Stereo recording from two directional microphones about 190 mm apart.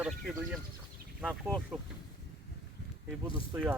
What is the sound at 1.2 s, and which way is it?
Speech, 5° right (ahead or behind).